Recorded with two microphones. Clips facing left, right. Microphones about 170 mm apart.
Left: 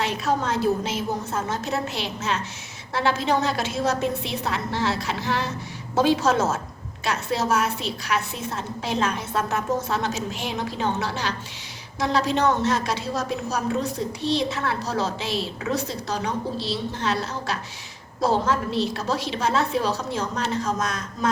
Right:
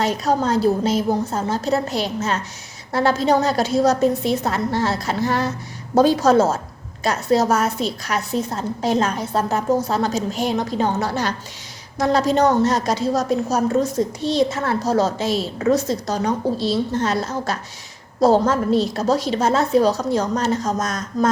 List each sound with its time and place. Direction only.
0.0 s a woman's voice: 40° right (ahead or behind)